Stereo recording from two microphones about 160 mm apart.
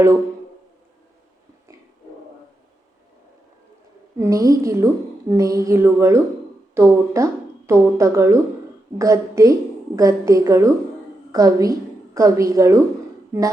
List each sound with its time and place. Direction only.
4.2 s a woman's voice: 20° right (ahead or behind)